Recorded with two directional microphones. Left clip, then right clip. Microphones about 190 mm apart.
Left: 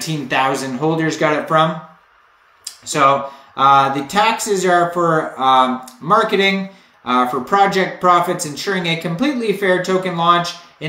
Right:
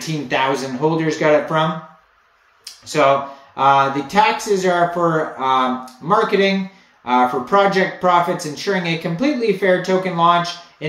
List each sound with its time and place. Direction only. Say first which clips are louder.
0.3 s speech: left 1 dB; 20° left (ahead or behind)
2.6 s a sound: left 1 dB; 20° left (ahead or behind)
3.5 s speech: left 2 dB; 20° left (ahead or behind)